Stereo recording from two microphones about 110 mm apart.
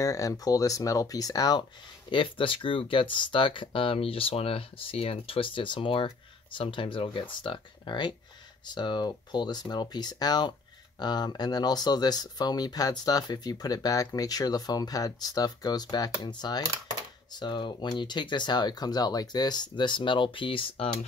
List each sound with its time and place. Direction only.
0.0 s speech: 30° left (ahead or behind); by 20.9 s 55° left (ahead or behind)